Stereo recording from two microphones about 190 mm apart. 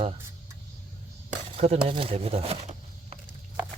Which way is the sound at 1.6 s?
30° right (ahead or behind).